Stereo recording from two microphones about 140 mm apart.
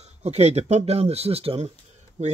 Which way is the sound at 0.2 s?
55° right (ahead or behind).